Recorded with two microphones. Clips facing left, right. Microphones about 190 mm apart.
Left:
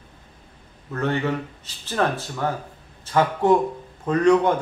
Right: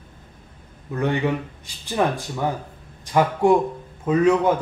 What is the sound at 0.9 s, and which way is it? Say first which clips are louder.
A man's voice: right 2 dB; 15° right (ahead or behind).